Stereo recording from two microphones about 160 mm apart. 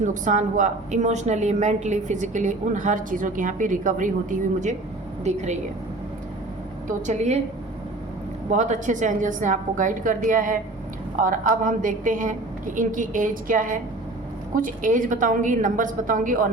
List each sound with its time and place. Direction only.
0.0 s a woman's voice: 50° right (ahead or behind)
6.8 s a woman's voice: 45° right (ahead or behind)
8.4 s a woman's voice: 50° right (ahead or behind)